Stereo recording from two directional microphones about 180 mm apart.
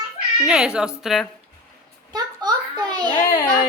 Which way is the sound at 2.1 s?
25° right (ahead or behind).